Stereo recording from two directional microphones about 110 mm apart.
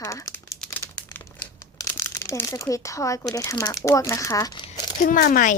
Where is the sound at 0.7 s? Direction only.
15° left (ahead or behind).